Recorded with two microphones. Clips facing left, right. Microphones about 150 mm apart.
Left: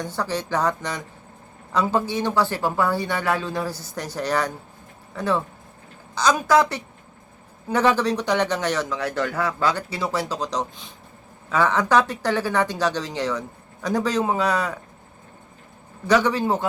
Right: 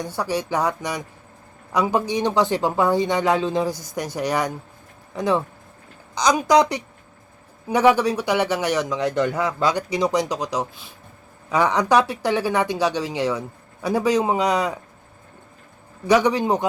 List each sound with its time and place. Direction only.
0.0 s speech: 10° right (ahead or behind)
16.0 s speech: 15° right (ahead or behind)